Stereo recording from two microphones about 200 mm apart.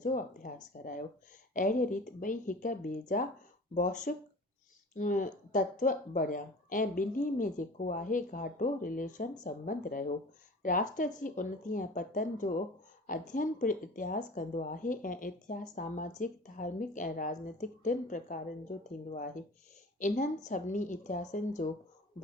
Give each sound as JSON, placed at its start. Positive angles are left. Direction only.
{"t": 0.0, "sound": "speech", "side_deg": 40}